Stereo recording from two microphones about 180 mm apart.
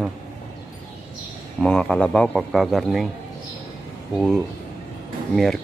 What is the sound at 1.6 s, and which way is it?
Speech, 5° left (ahead or behind).